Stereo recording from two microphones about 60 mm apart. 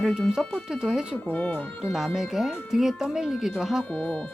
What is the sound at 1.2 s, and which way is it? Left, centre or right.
Speech, left.